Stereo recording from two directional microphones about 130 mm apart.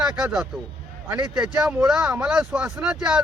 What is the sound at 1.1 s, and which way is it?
Speech, 30° right (ahead or behind).